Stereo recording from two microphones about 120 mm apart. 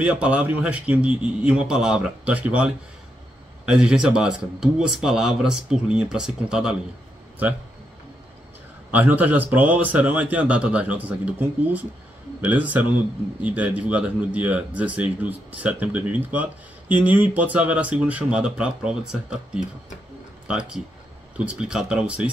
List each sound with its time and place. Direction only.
0.0 s speech: 10° right (ahead or behind)
8.9 s speech: 15° right (ahead or behind)